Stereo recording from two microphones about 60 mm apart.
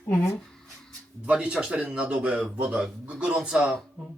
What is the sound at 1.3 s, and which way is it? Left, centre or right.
Speech, centre.